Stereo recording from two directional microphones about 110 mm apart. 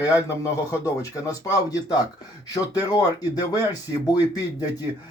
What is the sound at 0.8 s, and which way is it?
A man's voice, 30° left (ahead or behind).